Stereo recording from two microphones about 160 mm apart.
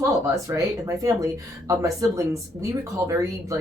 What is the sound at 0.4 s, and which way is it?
Speech, 20° right (ahead or behind).